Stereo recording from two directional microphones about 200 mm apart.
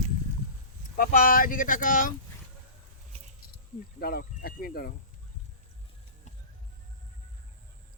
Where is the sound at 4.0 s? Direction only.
50° left (ahead or behind).